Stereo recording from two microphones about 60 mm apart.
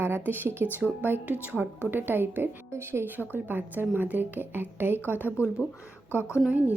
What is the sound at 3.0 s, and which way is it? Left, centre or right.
A woman's voice, right.